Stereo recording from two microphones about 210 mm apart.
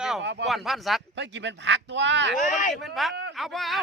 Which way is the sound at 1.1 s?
60° right (ahead or behind).